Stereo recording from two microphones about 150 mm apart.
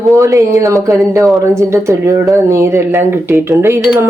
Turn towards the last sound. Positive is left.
turn(degrees=-15)  # may be behind; listen again after turning